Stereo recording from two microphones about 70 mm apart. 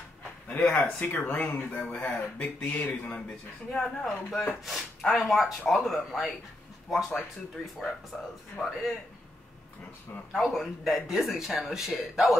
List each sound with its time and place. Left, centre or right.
0.7 s speech: left
3.7 s speech: centre
10.3 s speech: centre